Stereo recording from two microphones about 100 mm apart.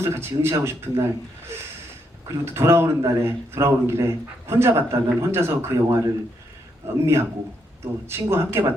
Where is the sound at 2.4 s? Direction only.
25° right (ahead or behind).